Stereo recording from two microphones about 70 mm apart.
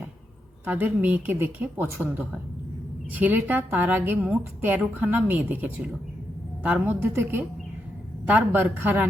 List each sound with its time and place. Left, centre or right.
0.6 s a woman's voice: right
7.1 s speech: right
8.3 s a woman's voice: right